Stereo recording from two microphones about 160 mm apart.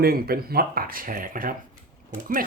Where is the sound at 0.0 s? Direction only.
70° right (ahead or behind).